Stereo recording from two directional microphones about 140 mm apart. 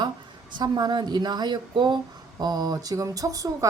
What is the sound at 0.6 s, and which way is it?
A woman's voice, 30° right (ahead or behind).